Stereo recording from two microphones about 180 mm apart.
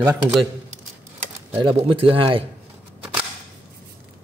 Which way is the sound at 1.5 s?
30° right (ahead or behind).